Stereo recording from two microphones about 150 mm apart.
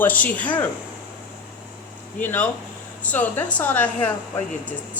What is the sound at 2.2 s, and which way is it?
Speech, 10° left (ahead or behind).